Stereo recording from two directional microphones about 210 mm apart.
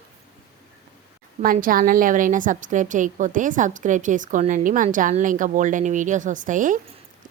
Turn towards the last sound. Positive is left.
turn(degrees=-40)  # may be behind; listen again after turning